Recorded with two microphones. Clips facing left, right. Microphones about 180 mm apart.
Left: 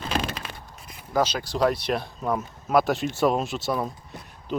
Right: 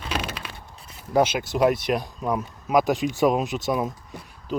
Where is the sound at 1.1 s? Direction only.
25° right (ahead or behind).